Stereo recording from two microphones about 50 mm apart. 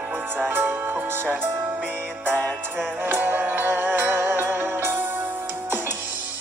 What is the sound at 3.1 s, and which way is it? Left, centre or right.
Music, right.